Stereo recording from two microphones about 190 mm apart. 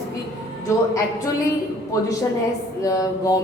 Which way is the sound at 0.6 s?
15° left (ahead or behind).